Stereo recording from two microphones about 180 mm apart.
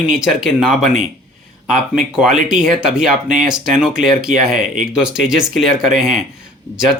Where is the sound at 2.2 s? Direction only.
5° right (ahead or behind).